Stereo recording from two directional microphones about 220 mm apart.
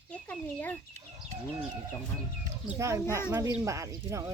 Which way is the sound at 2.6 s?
15° right (ahead or behind).